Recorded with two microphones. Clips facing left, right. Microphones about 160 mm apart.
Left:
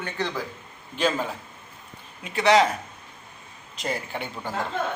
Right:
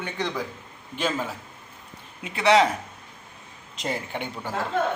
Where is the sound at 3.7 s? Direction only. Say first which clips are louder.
Even; 20° right (ahead or behind).